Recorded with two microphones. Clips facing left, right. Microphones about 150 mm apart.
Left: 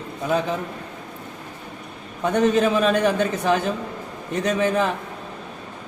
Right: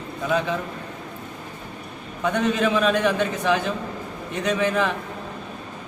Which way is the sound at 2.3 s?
40° left (ahead or behind).